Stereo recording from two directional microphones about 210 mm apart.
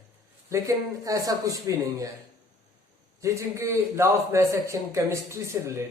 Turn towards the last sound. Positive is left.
turn(degrees=-15)  # may be behind; listen again after turning